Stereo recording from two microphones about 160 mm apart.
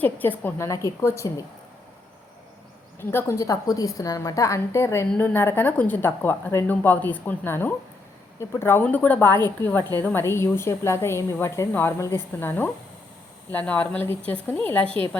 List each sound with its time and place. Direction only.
0.0 s a woman's voice: 10° left (ahead or behind)
3.0 s a woman's voice: 15° left (ahead or behind)